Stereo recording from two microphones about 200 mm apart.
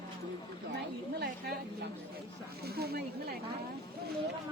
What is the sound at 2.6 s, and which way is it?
Snake, 50° right (ahead or behind).